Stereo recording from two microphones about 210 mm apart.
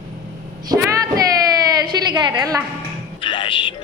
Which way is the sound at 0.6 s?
15° right (ahead or behind).